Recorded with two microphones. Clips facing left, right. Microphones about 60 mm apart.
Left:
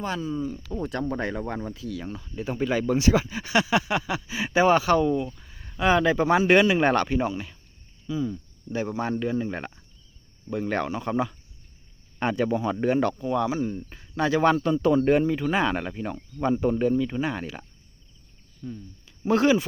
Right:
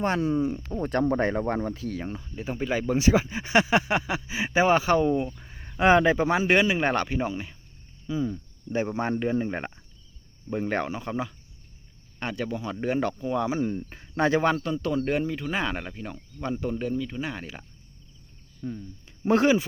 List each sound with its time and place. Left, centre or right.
0.0 s speech: right
0.8 s speech: right
2.1 s speech: centre
5.4 s a sound: right
5.7 s speech: right
8.1 s speech: right
11.0 s speech: centre
12.2 s speech: centre
12.8 s speech: centre
13.6 s speech: right
14.6 s speech: centre
17.2 s speech: centre
18.6 s speech: right